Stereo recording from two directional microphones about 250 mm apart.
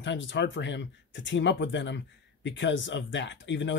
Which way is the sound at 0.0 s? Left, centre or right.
Left.